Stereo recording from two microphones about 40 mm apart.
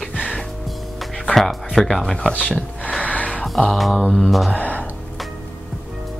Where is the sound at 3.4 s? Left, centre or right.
Centre.